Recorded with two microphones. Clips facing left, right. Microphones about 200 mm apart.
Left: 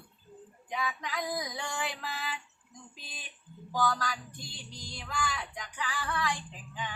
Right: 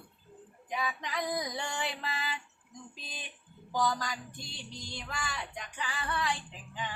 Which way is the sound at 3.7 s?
20° right (ahead or behind).